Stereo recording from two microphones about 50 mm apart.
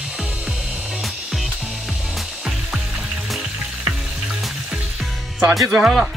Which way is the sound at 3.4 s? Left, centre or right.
Centre.